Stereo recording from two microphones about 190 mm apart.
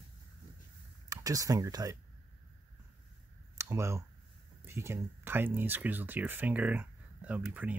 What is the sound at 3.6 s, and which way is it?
Speech, 15° right (ahead or behind).